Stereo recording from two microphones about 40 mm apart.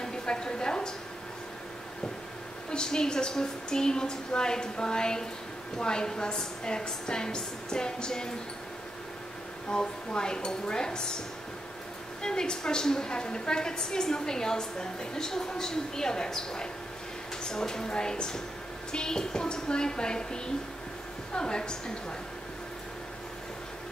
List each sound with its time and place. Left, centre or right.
0.0 s a sound: centre
2.7 s a woman's voice: centre
9.7 s a woman's voice: centre
12.2 s a woman's voice: centre